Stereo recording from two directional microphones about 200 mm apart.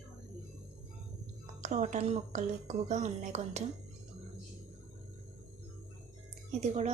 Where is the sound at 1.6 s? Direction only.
40° right (ahead or behind).